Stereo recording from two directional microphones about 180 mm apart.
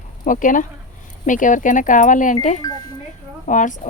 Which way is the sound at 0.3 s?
45° left (ahead or behind).